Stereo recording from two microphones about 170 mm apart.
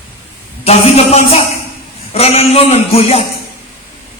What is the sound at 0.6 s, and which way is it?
Speech, 40° left (ahead or behind).